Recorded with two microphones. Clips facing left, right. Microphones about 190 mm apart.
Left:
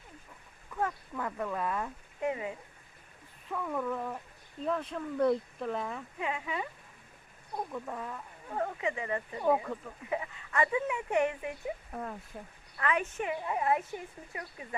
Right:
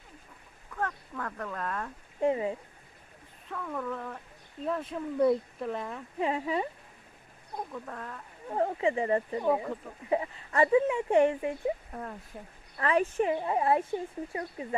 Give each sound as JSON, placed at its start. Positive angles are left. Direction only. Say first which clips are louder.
{"t": 0.8, "sound": "speech", "louder": "left 1 dB", "side_deg": 10}
{"t": 2.2, "sound": "speech", "louder": "right 6 dB", "side_deg": -30}
{"t": 3.5, "sound": "speech", "louder": "left 2 dB", "side_deg": 5}
{"t": 4.6, "sound": "speech", "louder": "right 1 dB", "side_deg": 0}
{"t": 6.1, "sound": "speech", "louder": "right 7 dB", "side_deg": -35}
{"t": 7.7, "sound": "speech", "louder": "left 2 dB", "side_deg": 5}
{"t": 8.4, "sound": "speech", "louder": "right 6 dB", "side_deg": -30}
{"t": 9.4, "sound": "speech", "louder": "right 1 dB", "side_deg": 0}
{"t": 10.1, "sound": "speech", "louder": "right 6 dB", "side_deg": -35}
{"t": 12.7, "sound": "speech", "louder": "right 5 dB", "side_deg": -35}